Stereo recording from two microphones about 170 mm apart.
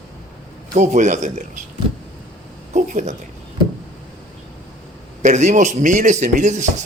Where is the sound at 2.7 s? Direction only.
45° right (ahead or behind).